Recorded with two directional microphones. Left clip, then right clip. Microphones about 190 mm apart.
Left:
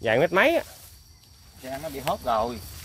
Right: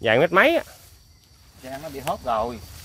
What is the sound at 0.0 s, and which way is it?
Speech, 25° right (ahead or behind).